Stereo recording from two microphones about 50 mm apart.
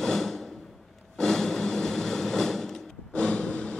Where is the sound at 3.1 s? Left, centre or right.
Centre.